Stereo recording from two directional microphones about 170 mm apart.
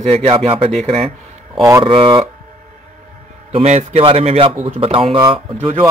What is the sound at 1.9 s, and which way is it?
Speech, 30° right (ahead or behind).